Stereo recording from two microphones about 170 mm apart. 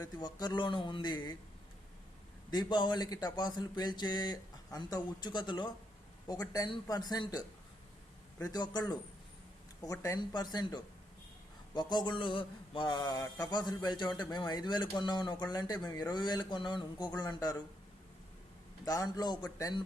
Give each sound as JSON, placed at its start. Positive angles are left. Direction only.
{"t": 0.2, "sound": "mantra", "side_deg": 25}
{"t": 2.5, "sound": "mantra", "side_deg": 25}
{"t": 18.9, "sound": "mantra", "side_deg": 20}